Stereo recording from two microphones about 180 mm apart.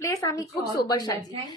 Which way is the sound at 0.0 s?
20° left (ahead or behind).